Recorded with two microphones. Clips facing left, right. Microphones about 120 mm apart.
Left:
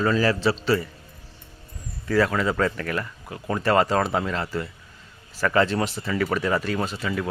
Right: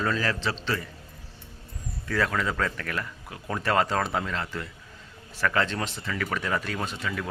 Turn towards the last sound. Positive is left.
turn(degrees=5)  # may be behind; listen again after turning